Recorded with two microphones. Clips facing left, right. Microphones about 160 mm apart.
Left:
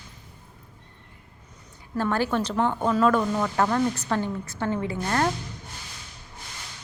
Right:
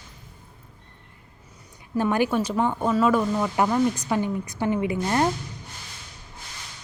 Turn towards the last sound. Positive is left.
turn(degrees=-15)  # may be behind; listen again after turning